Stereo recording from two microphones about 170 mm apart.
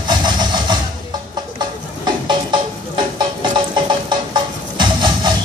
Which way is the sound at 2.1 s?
25° right (ahead or behind).